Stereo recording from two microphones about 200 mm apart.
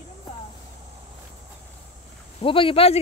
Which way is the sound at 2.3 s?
25° left (ahead or behind).